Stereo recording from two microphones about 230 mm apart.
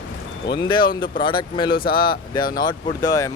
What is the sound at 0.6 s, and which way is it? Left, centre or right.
Speech, centre.